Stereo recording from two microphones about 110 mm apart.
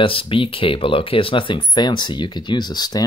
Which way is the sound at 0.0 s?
55° left (ahead or behind).